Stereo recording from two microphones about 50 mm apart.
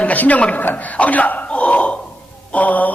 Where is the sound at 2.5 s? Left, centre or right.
Left.